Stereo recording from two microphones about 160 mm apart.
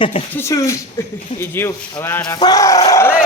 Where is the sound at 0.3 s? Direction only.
20° left (ahead or behind).